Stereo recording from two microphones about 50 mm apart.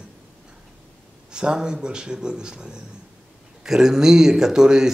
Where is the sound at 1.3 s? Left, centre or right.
Centre.